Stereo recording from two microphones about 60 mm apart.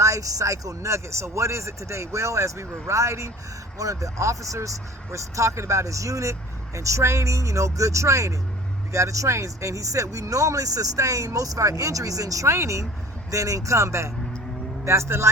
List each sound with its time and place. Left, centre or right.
0.0 s speech: right